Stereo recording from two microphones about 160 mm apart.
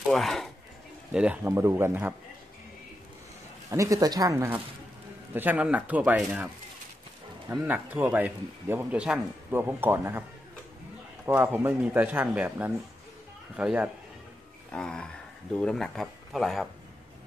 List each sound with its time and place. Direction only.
0.1 s speech: centre (ahead or behind)
1.1 s speech: 10° right (ahead or behind)
3.7 s speech: 20° right (ahead or behind)
7.5 s speech: 10° right (ahead or behind)
11.2 s speech: 15° right (ahead or behind)
14.7 s speech: 5° left (ahead or behind)